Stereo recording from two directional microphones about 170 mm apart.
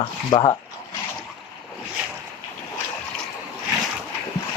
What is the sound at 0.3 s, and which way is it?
Speech, 25° left (ahead or behind).